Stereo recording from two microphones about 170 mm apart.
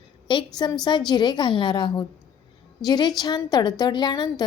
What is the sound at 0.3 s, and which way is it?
A woman's voice, 25° left (ahead or behind).